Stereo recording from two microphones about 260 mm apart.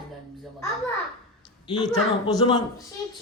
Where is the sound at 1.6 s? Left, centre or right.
Centre.